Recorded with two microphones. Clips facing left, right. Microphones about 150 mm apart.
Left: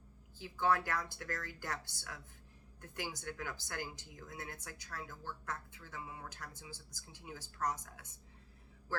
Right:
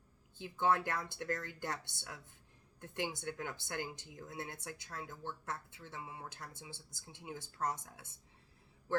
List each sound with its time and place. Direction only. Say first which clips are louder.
0.3 s speech: right 1 dB; 20° right (ahead or behind)